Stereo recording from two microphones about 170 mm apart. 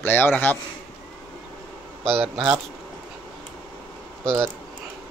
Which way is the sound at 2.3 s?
5° right (ahead or behind).